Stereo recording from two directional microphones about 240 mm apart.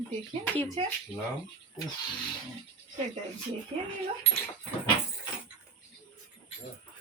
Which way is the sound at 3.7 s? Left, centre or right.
Right.